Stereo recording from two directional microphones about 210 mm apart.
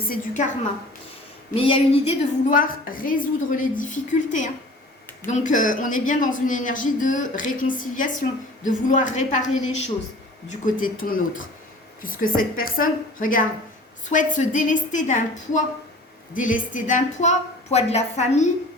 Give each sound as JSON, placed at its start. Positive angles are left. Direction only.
{"t": 0.0, "sound": "a woman's voice", "side_deg": 40}
{"t": 1.5, "sound": "a man's voice", "side_deg": 25}